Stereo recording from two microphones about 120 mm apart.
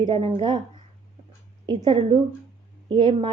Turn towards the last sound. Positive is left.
turn(degrees=-45)  # may be behind; listen again after turning